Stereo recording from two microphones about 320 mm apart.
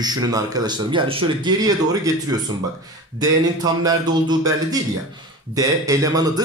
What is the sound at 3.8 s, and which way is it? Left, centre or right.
A man's voice, centre.